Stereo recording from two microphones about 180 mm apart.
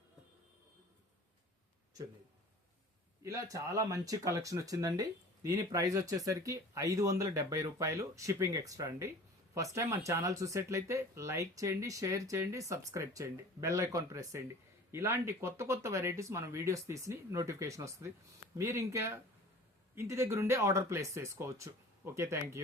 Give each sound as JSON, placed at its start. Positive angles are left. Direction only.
{"t": 3.2, "sound": "speech", "side_deg": -15}